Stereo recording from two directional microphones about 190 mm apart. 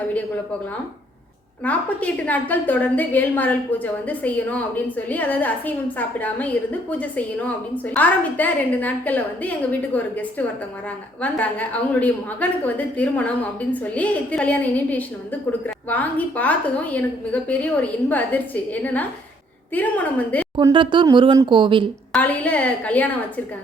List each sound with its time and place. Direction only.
1.6 s a woman's voice: 5° left (ahead or behind)
20.6 s speech: 25° right (ahead or behind)
22.1 s a woman's voice: 10° left (ahead or behind)